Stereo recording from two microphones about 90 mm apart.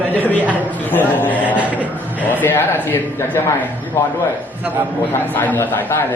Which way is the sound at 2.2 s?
20° left (ahead or behind).